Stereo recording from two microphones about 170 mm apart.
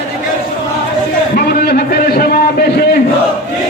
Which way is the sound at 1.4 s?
65° left (ahead or behind).